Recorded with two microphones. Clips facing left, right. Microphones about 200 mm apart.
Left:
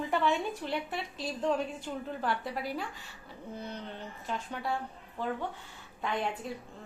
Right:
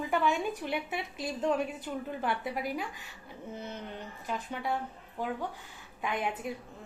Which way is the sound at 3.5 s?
20° right (ahead or behind).